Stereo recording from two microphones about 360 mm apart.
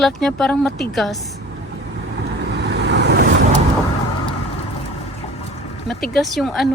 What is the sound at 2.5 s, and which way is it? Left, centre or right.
Vehicle, right.